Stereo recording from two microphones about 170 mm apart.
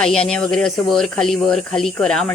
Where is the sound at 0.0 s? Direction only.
5° left (ahead or behind).